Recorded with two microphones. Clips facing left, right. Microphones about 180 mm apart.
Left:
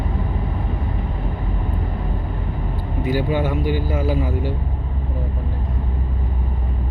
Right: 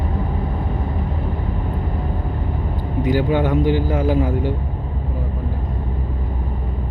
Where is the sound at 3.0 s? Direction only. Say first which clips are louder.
Right 3 dB; 15° right (ahead or behind).